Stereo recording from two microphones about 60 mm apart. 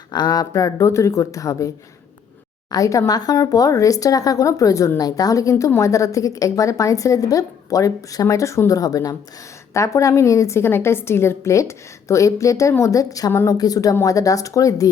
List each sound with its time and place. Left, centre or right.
0.3 s a woman's voice: left
3.1 s a woman's voice: left
4.9 s a woman's voice: left
9.7 s a woman's voice: left
12.8 s a woman's voice: left
14.0 s a woman's voice: left